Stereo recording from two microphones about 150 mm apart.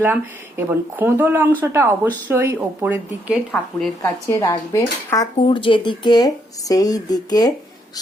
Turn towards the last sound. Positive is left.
turn(degrees=25)  # may be behind; listen again after turning